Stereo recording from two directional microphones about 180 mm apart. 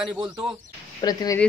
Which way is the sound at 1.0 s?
20° left (ahead or behind).